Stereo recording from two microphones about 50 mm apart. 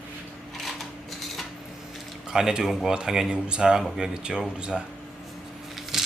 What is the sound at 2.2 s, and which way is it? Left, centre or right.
Speech, centre.